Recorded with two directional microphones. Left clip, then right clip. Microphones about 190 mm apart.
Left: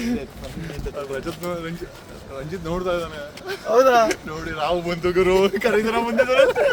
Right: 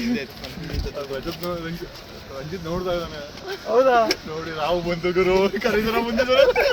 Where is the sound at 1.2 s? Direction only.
30° left (ahead or behind).